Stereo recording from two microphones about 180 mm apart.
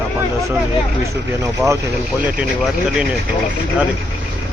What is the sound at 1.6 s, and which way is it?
Speech, 15° right (ahead or behind).